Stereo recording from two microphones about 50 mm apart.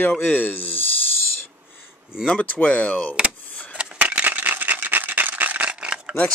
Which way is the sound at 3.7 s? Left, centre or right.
Right.